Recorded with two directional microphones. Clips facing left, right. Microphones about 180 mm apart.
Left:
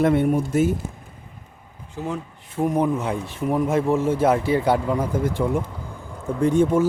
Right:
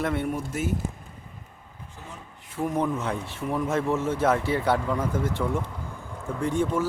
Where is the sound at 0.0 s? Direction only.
20° left (ahead or behind).